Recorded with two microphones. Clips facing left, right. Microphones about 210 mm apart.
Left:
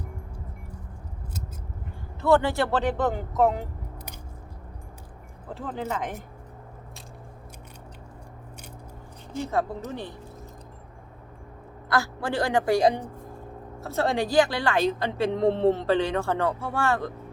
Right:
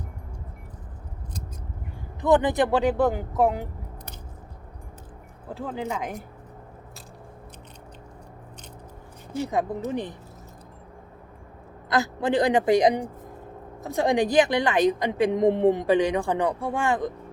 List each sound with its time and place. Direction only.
2.2 s a woman's voice: 15° right (ahead or behind)
5.5 s a woman's voice: 10° right (ahead or behind)
9.3 s a woman's voice: 10° right (ahead or behind)
11.9 s a woman's voice: 20° right (ahead or behind)